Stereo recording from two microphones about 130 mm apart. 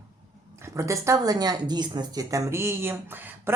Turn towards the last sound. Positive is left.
turn(degrees=-15)  # may be behind; listen again after turning